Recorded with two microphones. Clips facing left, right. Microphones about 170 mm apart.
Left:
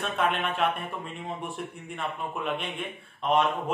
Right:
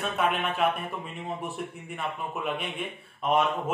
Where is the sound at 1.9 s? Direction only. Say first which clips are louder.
Even; centre (ahead or behind).